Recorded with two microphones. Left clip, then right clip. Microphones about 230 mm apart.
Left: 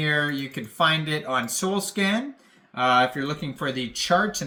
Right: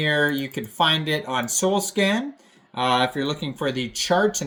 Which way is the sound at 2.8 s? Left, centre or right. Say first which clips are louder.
Left 1 dB; left.